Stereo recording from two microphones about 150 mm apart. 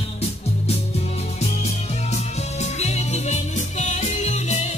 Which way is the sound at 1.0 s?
45° left (ahead or behind).